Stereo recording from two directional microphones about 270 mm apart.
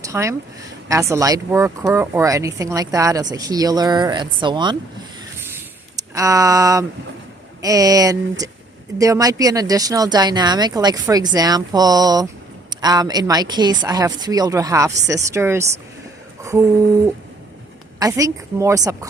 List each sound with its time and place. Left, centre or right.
0.0 s speech: centre
6.1 s speech: centre
16.4 s a sound: centre
18.0 s speech: centre